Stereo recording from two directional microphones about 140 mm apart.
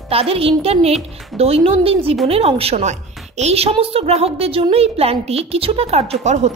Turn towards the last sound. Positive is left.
turn(degrees=-50)  # may be behind; listen again after turning